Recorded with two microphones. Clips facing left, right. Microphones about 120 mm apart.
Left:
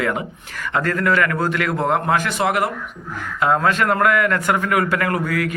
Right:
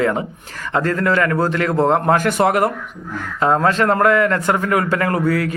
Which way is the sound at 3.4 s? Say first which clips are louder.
Right 2 dB; 30° right (ahead or behind).